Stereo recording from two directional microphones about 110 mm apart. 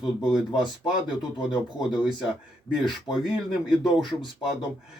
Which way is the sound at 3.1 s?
50° left (ahead or behind).